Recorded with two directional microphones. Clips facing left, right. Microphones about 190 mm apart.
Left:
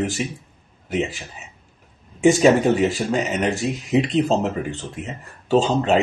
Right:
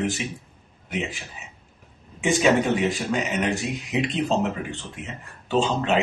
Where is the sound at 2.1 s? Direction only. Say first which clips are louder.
Left 5 dB; 35° left (ahead or behind).